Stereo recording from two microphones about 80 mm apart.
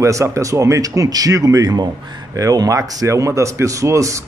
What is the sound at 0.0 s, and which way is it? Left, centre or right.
Speech, right.